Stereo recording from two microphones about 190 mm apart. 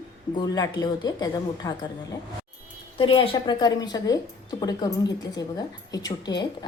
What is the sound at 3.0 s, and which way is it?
A woman's voice, 30° left (ahead or behind).